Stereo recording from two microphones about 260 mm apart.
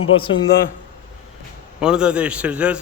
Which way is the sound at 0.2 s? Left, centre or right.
Centre.